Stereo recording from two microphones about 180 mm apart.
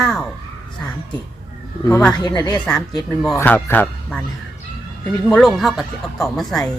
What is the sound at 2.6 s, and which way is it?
Speech, 5° left (ahead or behind).